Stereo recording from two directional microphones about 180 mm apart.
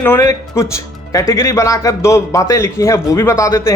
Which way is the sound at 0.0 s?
15° left (ahead or behind).